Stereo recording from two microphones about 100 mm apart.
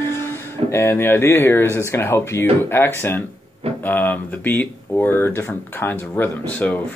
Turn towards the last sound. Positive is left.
turn(degrees=20)  # may be behind; listen again after turning